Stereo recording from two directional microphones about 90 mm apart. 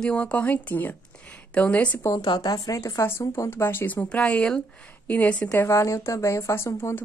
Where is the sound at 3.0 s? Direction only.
35° left (ahead or behind); by 5.5 s 15° left (ahead or behind).